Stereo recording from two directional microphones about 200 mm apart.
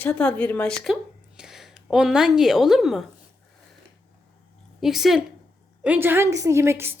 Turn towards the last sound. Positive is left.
turn(degrees=-10)  # may be behind; listen again after turning